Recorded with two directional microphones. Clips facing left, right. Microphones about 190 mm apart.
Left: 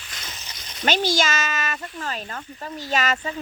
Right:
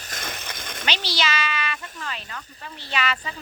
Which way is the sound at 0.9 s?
45° left (ahead or behind).